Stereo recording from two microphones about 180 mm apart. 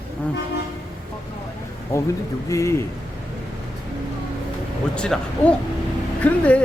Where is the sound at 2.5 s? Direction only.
15° left (ahead or behind).